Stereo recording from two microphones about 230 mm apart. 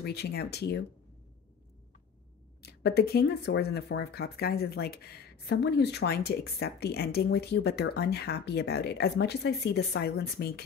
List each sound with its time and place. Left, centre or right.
0.0 s speech: left
2.6 s speech: left